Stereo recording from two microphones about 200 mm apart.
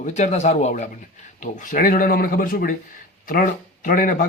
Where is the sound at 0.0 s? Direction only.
35° left (ahead or behind).